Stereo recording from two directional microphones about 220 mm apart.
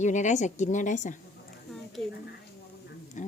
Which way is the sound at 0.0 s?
35° left (ahead or behind).